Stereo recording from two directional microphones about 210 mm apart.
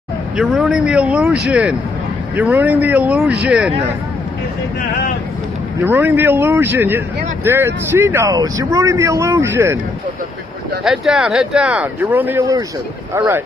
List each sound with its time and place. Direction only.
0.4 s speech: centre (ahead or behind)
5.9 s speech: 10° right (ahead or behind)
10.8 s speech: centre (ahead or behind)